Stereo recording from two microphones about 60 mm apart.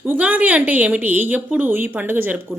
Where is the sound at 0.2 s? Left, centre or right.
Right.